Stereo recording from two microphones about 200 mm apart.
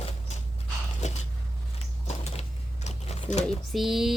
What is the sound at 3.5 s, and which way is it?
Speech, centre (ahead or behind).